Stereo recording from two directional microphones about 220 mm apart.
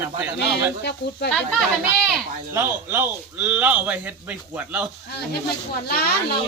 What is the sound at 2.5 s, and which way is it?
Speech, 10° right (ahead or behind).